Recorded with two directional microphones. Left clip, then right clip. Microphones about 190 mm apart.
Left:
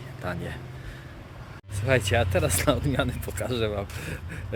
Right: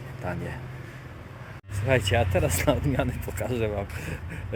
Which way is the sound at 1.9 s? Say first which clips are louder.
Even; 5° left (ahead or behind).